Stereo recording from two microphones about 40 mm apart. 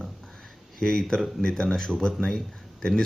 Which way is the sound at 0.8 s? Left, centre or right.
Centre.